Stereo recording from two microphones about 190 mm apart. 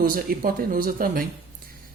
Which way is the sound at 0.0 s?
50° right (ahead or behind).